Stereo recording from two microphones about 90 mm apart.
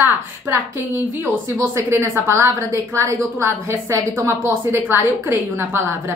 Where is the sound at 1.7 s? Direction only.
30° right (ahead or behind).